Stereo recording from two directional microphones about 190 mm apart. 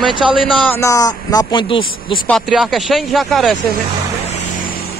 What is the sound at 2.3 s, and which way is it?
Speech, centre (ahead or behind).